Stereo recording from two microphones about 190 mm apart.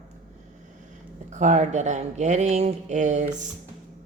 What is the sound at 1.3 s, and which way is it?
Speech, 40° right (ahead or behind).